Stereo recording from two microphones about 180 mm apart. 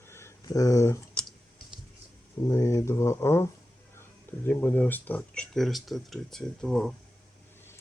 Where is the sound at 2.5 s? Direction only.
15° left (ahead or behind).